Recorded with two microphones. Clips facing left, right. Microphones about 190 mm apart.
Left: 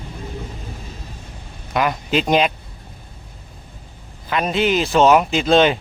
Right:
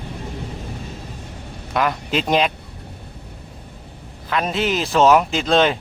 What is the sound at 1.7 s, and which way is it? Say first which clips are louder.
Speech: left 1 dB; centre (ahead or behind).